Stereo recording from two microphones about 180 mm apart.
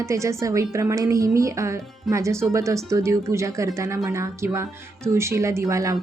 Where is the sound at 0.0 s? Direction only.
15° right (ahead or behind).